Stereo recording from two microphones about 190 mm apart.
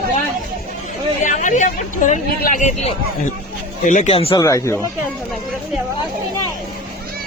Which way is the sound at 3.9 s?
40° left (ahead or behind).